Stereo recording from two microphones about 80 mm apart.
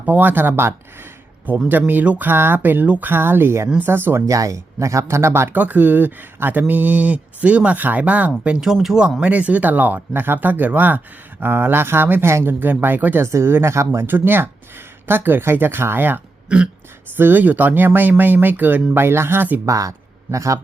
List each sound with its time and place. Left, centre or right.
0.0 s speech: right
4.3 s speech: right; by 8.3 s centre
8.4 s speech: centre
9.2 s speech: centre
13.2 s speech: right
19.6 s speech: right